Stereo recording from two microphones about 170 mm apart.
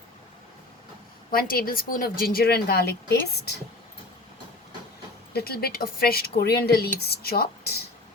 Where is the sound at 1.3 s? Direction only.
60° left (ahead or behind).